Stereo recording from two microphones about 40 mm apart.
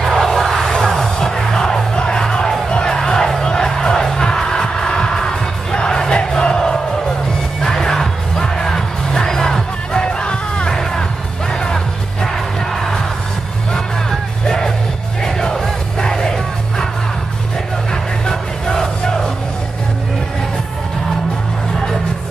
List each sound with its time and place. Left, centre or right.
0.0 s a sound: centre
0.8 s music: centre
10.7 s music: centre
14.4 s music: centre
18.2 s music: centre